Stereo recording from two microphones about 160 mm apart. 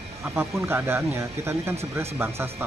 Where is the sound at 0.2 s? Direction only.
15° right (ahead or behind).